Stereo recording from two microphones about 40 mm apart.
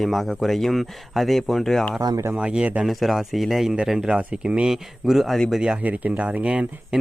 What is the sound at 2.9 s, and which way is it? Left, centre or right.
Speech, centre.